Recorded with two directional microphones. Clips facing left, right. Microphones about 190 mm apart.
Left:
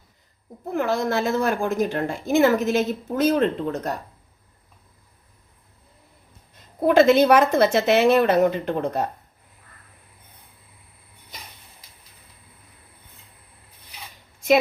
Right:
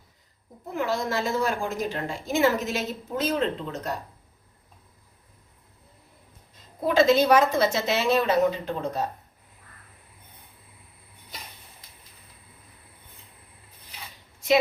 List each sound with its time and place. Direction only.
0.7 s a woman's voice: 55° left (ahead or behind)
6.8 s a woman's voice: 60° left (ahead or behind)